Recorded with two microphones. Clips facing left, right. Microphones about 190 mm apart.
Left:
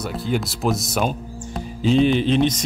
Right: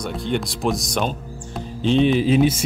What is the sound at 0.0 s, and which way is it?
Speech, 5° left (ahead or behind).